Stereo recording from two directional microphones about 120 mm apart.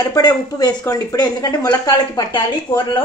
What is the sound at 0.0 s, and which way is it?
Speech, 30° left (ahead or behind).